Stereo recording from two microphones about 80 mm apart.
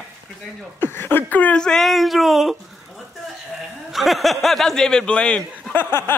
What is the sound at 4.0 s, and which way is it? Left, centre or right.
Speech, centre.